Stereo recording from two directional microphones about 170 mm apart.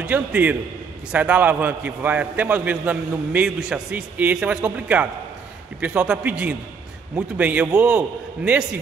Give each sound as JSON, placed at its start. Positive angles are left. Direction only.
{"t": 0.0, "sound": "a man's voice", "side_deg": -10}